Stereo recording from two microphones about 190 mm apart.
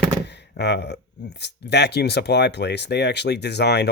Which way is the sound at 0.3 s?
60° left (ahead or behind).